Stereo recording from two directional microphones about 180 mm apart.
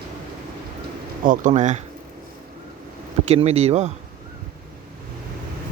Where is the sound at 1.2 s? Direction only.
45° right (ahead or behind).